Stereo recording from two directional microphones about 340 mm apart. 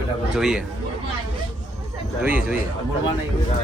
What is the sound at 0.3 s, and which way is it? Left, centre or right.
Speech, centre.